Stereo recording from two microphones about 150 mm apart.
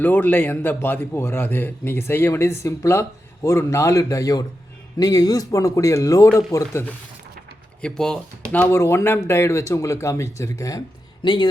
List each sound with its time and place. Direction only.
0.0 s a man's voice: 10° left (ahead or behind)
7.8 s speech: 5° left (ahead or behind)
8.5 s speech: 15° left (ahead or behind); by 11.4 s 30° left (ahead or behind)